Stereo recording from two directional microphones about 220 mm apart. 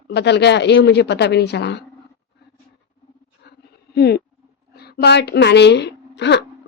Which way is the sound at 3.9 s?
50° left (ahead or behind).